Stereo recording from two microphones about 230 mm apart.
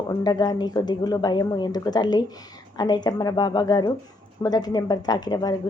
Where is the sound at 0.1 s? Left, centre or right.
Centre.